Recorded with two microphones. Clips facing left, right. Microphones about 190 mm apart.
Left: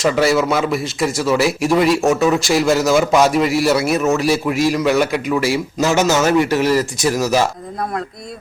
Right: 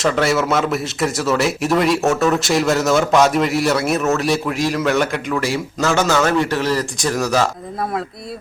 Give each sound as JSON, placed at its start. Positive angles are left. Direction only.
{"t": 0.0, "sound": "speech", "side_deg": 0}
{"t": 6.4, "sound": "speech", "side_deg": 10}